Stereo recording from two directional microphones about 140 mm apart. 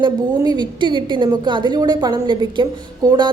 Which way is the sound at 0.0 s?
30° right (ahead or behind).